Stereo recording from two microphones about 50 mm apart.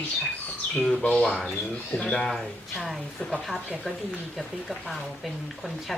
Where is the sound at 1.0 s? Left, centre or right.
Left.